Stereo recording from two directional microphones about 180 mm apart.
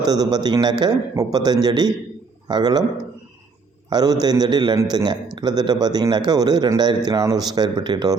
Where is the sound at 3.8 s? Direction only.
20° right (ahead or behind).